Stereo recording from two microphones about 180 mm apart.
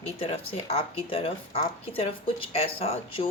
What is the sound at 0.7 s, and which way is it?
Speech, 30° left (ahead or behind).